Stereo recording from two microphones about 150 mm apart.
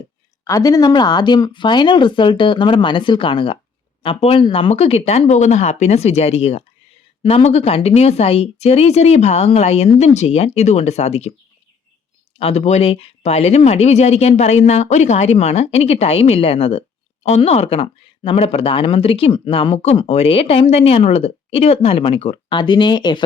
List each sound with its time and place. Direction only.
0.4 s speech: 25° left (ahead or behind); by 11.3 s 45° left (ahead or behind)
12.4 s speech: 45° left (ahead or behind)